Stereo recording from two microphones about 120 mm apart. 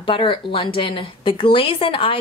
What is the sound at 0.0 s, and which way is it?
A woman's voice, 45° left (ahead or behind).